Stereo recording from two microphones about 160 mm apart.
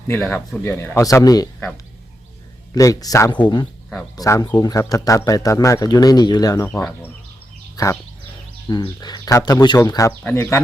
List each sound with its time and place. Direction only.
0.2 s speech: 10° left (ahead or behind); by 1.5 s 25° left (ahead or behind)
2.7 s speech: 20° left (ahead or behind)
6.7 s speech: 10° left (ahead or behind)
7.8 s speech: 25° left (ahead or behind)